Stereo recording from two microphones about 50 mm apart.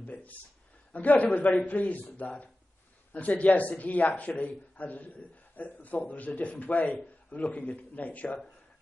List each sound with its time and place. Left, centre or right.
0.0 s a man's voice: left